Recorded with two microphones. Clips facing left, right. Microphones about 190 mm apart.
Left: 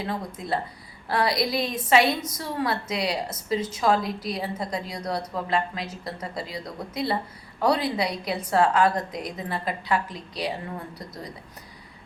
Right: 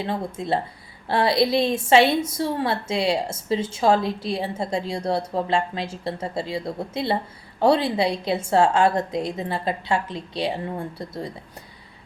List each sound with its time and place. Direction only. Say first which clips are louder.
0.0 s a woman's voice: right 4 dB; 25° right (ahead or behind)